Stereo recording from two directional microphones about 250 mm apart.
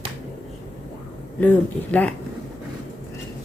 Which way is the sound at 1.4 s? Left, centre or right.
Centre.